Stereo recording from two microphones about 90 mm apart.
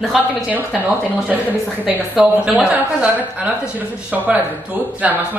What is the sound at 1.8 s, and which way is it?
A woman's voice, 15° right (ahead or behind).